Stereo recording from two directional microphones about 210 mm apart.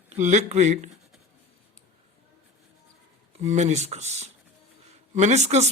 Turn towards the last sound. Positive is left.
turn(degrees=-30)  # may be behind; listen again after turning